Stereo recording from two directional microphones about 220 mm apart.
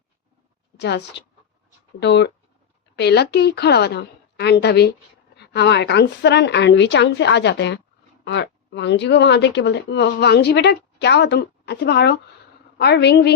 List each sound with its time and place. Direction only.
0.8 s speech: 50° left (ahead or behind)